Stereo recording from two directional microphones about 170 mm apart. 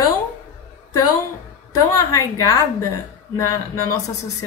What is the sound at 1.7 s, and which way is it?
A woman's voice, 20° left (ahead or behind).